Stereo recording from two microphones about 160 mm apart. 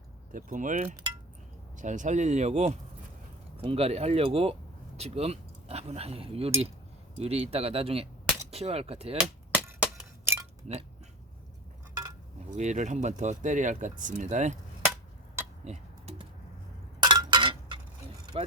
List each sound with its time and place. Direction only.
0.3 s speech: 55° right (ahead or behind); by 9.1 s 40° right (ahead or behind)
9.5 s glass: 10° right (ahead or behind)
12.5 s speech: 50° right (ahead or behind)
15.6 s typing: 40° right (ahead or behind)
17.0 s a sound: 30° right (ahead or behind)
18.3 s speech: 35° right (ahead or behind)